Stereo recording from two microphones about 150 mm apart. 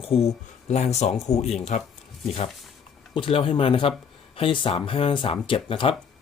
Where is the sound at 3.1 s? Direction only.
35° left (ahead or behind).